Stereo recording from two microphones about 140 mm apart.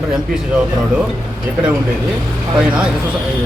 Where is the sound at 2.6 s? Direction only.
5° right (ahead or behind).